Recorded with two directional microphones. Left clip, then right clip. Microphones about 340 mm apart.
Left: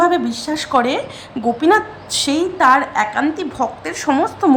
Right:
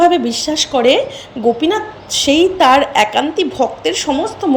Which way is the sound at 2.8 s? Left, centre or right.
Left.